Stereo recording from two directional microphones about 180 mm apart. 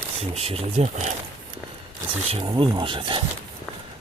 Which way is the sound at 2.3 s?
30° right (ahead or behind).